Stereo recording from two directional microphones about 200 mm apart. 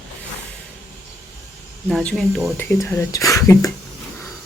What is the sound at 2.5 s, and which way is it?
Speech, 10° left (ahead or behind).